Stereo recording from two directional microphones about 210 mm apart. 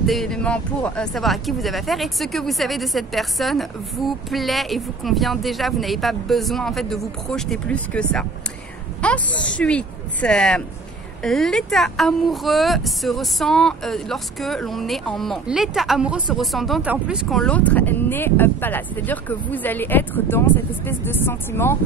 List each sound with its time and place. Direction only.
0.0 s speech: centre (ahead or behind)